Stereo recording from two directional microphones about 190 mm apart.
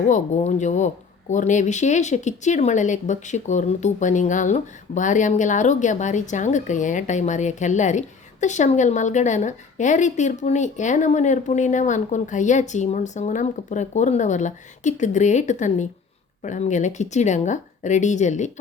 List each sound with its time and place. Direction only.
0.0 s speech: 40° left (ahead or behind)